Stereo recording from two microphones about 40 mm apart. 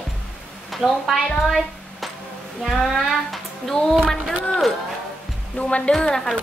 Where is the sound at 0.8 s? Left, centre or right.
Centre.